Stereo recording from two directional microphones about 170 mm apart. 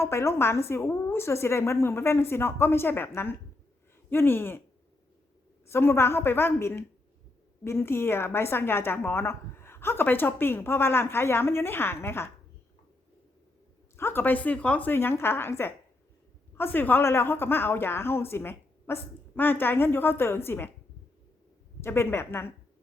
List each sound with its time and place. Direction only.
0.0 s a woman's voice: 15° left (ahead or behind)
5.6 s a woman's voice: 15° left (ahead or behind)
13.9 s a woman's voice: 15° left (ahead or behind)
21.8 s a woman's voice: 15° left (ahead or behind)